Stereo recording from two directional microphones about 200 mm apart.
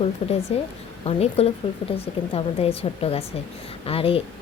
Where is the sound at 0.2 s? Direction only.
30° left (ahead or behind).